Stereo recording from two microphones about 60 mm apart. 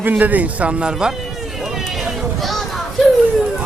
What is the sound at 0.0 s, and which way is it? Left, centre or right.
Speech, right.